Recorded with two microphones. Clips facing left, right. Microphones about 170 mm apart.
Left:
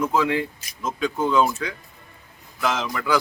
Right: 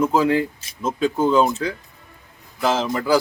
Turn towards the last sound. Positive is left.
turn(degrees=-30)  # may be behind; listen again after turning